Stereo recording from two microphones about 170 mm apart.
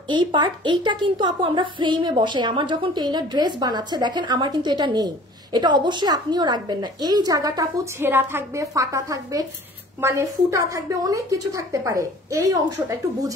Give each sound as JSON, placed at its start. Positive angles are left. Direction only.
{"t": 0.1, "sound": "a woman's voice", "side_deg": -25}